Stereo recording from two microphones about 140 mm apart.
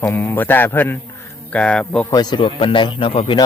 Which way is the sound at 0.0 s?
15° left (ahead or behind).